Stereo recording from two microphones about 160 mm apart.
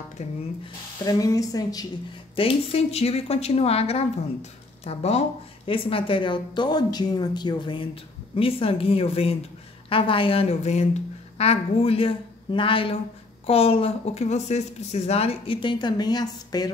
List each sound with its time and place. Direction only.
0.2 s speech: 45° left (ahead or behind)
1.0 s a woman's voice: 20° left (ahead or behind)
2.3 s a woman's voice: 35° left (ahead or behind)